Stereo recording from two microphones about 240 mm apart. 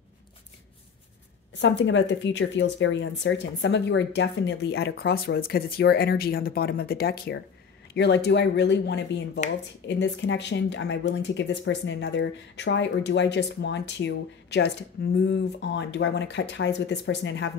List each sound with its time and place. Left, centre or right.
1.6 s speech: left